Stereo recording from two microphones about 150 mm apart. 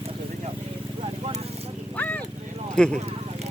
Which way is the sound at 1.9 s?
10° left (ahead or behind).